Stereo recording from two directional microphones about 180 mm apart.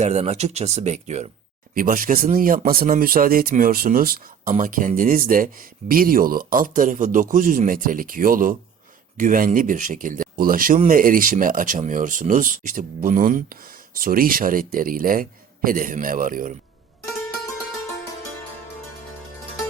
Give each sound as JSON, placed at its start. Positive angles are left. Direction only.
{"t": 0.0, "sound": "speech", "side_deg": -40}
{"t": 1.7, "sound": "speech", "side_deg": -50}